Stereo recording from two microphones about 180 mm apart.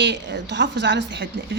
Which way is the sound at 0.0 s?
80° right.